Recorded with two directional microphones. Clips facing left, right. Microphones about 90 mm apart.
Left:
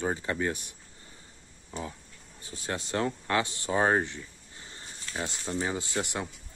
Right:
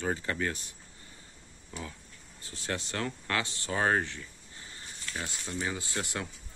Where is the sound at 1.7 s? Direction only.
25° left (ahead or behind).